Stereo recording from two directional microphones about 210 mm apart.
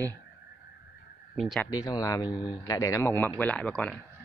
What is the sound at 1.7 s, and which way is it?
A man's voice, 20° left (ahead or behind).